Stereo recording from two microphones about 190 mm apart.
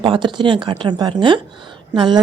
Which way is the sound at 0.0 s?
25° right (ahead or behind).